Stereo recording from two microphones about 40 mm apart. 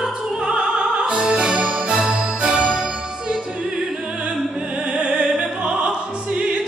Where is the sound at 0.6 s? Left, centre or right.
Centre.